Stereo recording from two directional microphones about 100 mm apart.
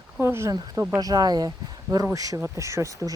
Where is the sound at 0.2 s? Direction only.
25° right (ahead or behind).